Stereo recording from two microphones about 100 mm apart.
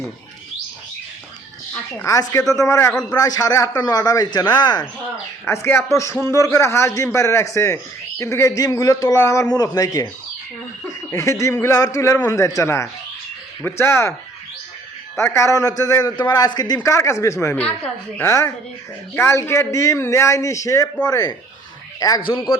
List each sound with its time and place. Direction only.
2.0 s a man's voice: 30° left (ahead or behind)
2.9 s a man's voice: 5° left (ahead or behind)
3.2 s a man's voice: 35° left (ahead or behind)
5.5 s a man's voice: 25° left (ahead or behind)
15.1 s a man's voice: 30° left (ahead or behind)
16.8 s a man's voice: 30° left (ahead or behind)
17.5 s a man's voice: 15° left (ahead or behind)
18.2 s a man's voice: 30° left (ahead or behind)